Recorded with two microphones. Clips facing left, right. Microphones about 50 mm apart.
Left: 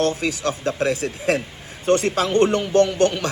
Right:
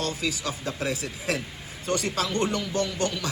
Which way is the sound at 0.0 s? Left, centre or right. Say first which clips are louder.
Left 8 dB; left.